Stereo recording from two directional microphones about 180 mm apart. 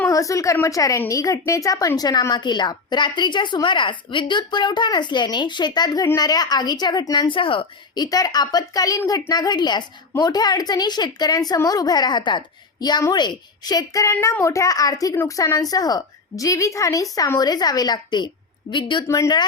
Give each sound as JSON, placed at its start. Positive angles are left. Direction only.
{"t": 0.0, "sound": "a woman's voice", "side_deg": 20}